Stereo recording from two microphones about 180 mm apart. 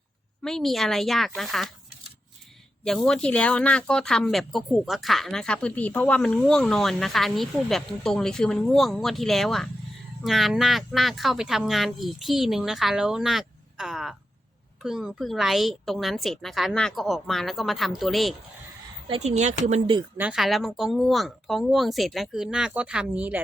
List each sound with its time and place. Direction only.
0.4 s speech: centre (ahead or behind)
2.8 s speech: 5° left (ahead or behind)
19.0 s speech: 35° right (ahead or behind)
20.1 s speech: 5° right (ahead or behind)